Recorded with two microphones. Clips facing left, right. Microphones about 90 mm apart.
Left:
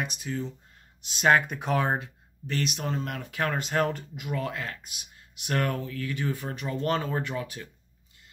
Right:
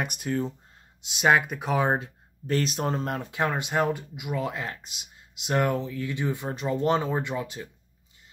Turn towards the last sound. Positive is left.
turn(degrees=-20)  # may be behind; listen again after turning